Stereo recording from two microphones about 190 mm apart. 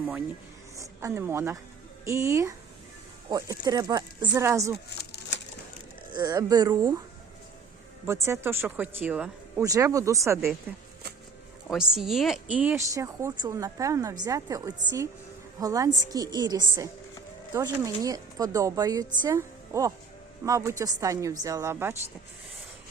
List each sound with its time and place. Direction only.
0.8 s a woman's voice: 15° right (ahead or behind)
4.9 s a sound: 60° left (ahead or behind)
6.1 s speech: 20° right (ahead or behind)
8.0 s a woman's voice: 15° right (ahead or behind)
11.7 s a woman's voice: centre (ahead or behind)